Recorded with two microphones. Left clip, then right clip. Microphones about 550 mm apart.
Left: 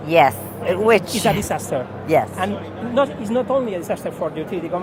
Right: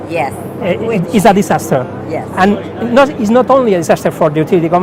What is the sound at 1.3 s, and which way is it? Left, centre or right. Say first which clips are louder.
Speech: right 14 dB; right.